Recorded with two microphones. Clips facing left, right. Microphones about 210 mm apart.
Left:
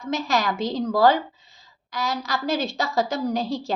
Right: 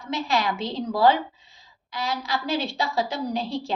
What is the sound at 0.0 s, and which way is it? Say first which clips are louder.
A woman's voice: left 1 dB; 45° left (ahead or behind).